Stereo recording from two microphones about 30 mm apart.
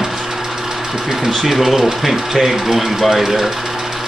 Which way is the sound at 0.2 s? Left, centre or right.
Centre.